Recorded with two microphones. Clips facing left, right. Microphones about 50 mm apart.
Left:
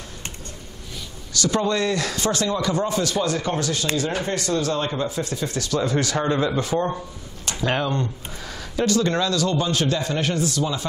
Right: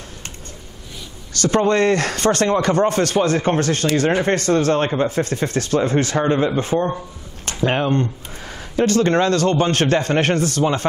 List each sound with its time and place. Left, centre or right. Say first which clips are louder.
1.3 s speech: right 5 dB; right